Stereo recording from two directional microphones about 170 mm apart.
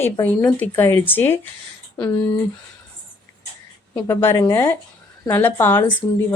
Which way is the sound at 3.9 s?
15° left (ahead or behind).